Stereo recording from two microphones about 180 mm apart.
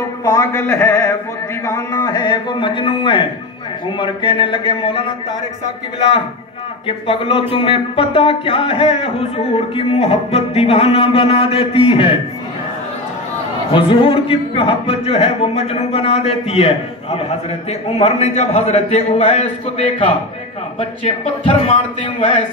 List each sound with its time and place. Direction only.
0.2 s a man's voice: 15° left (ahead or behind)
13.7 s speech: 30° left (ahead or behind)
21.0 s speech: 35° left (ahead or behind)